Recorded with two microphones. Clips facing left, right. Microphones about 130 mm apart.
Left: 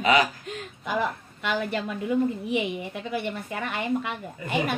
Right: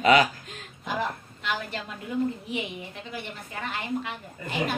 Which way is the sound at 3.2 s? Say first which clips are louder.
Left 6 dB; 60° left (ahead or behind).